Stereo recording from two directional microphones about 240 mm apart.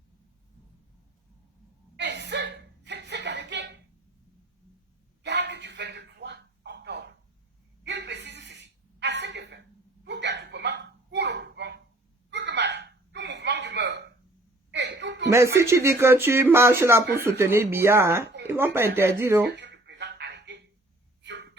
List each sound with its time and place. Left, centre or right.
2.0 s chuckle: right
5.2 s a sound: right
12.3 s hiccup: right
14.7 s chuckle: right
15.3 s speech: centre
19.5 s a sound: right